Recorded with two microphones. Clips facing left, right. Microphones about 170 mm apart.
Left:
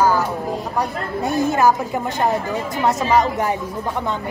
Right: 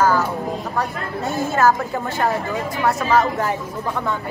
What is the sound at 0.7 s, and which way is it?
A woman's voice, 15° left (ahead or behind).